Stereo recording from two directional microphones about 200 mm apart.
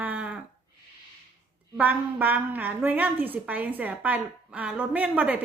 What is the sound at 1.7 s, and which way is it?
A woman's voice, 10° right (ahead or behind).